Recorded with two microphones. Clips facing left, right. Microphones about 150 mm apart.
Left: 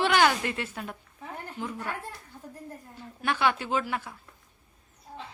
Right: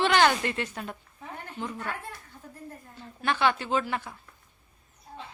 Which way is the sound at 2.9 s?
10° left (ahead or behind).